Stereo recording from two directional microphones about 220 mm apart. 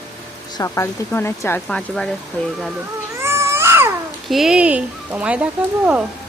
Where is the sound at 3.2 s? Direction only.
10° right (ahead or behind).